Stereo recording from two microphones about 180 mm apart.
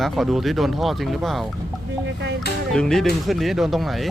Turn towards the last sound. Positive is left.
turn(degrees=0)  # may be behind; listen again after turning